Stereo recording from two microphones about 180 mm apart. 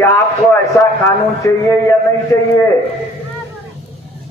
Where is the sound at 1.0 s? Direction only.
15° left (ahead or behind).